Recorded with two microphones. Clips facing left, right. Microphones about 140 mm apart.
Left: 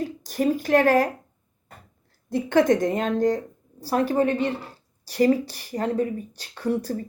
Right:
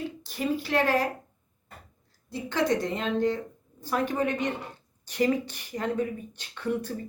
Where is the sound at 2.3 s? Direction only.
50° left (ahead or behind).